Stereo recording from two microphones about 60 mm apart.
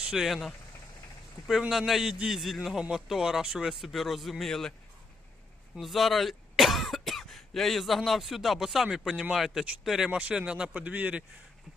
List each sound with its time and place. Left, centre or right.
0.0 s speech: centre
0.3 s speech: centre
1.7 s speech: centre
5.8 s speech: centre
10.1 s speech: centre